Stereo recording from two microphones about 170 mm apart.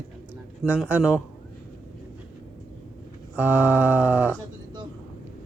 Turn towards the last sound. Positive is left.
turn(degrees=-10)  # may be behind; listen again after turning